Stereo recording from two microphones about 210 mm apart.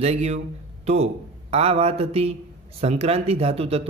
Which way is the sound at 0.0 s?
30° right (ahead or behind).